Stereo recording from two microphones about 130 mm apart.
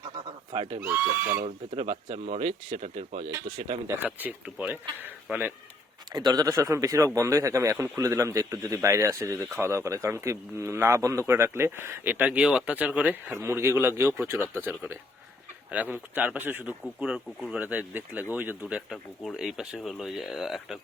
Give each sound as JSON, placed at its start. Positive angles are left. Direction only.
{"t": 0.5, "sound": "speech", "side_deg": -45}
{"t": 0.8, "sound": "speech", "side_deg": -15}
{"t": 1.7, "sound": "speech", "side_deg": -50}
{"t": 3.8, "sound": "speech", "side_deg": -10}
{"t": 6.1, "sound": "speech", "side_deg": -30}
{"t": 15.7, "sound": "speech", "side_deg": -10}
{"t": 17.0, "sound": "speech", "side_deg": -5}
{"t": 19.5, "sound": "speech", "side_deg": 0}